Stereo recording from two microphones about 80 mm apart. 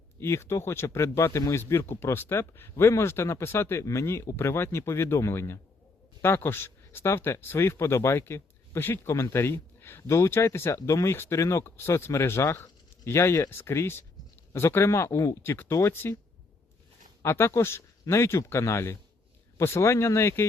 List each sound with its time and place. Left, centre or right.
0.2 s speech: left
17.2 s speech: left